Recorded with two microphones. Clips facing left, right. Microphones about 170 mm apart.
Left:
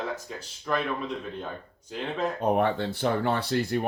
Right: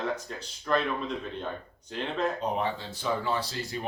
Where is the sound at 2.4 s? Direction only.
55° left (ahead or behind).